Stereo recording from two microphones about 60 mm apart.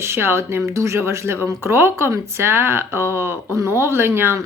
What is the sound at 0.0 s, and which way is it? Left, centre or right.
Speech, right.